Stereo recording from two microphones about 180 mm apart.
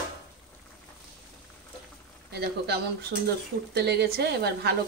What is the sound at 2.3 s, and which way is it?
Speech, 65° right (ahead or behind).